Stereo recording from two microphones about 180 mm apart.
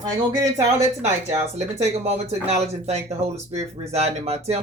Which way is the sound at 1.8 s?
35° right (ahead or behind).